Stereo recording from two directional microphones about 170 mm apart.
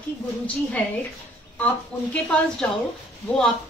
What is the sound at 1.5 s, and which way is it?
A woman's voice, 10° left (ahead or behind).